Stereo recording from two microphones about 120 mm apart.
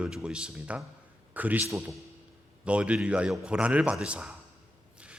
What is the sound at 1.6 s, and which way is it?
Speech, 25° right (ahead or behind).